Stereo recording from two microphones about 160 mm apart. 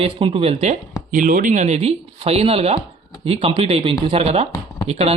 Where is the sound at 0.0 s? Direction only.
35° right (ahead or behind).